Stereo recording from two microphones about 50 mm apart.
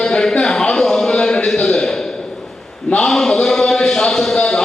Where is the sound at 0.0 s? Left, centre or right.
Centre.